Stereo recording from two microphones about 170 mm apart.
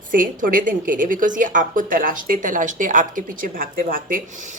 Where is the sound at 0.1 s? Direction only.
55° right (ahead or behind).